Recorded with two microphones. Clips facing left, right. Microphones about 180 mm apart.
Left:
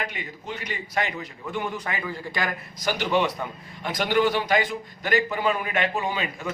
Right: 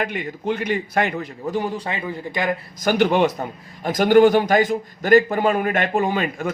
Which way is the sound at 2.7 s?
55° right (ahead or behind).